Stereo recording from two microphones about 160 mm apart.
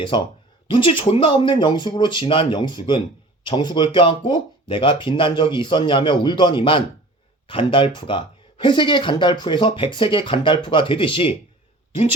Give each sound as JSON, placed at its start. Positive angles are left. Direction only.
{"t": 0.1, "sound": "speech", "side_deg": 30}